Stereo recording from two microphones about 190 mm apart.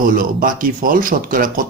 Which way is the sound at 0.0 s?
45° right (ahead or behind).